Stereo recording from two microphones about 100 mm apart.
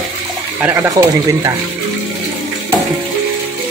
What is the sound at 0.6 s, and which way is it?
Speech, 25° right (ahead or behind).